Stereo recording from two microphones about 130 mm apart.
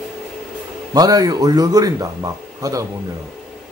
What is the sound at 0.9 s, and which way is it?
A man's voice, 30° right (ahead or behind).